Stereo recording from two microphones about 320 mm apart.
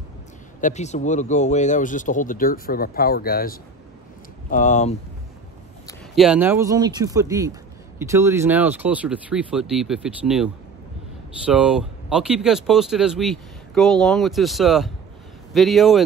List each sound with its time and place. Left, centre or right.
0.6 s speech: left
6.1 s speech: centre